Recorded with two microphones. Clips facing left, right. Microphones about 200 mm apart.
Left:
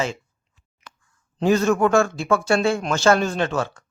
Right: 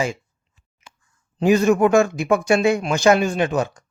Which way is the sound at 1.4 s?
15° right (ahead or behind).